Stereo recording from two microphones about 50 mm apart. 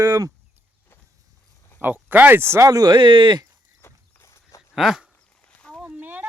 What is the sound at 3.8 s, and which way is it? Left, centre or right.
Walk, left.